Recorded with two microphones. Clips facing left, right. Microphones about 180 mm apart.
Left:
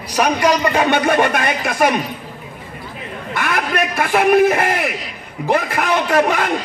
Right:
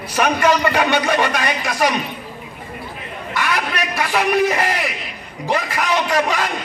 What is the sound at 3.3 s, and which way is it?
A man's voice, 55° left (ahead or behind).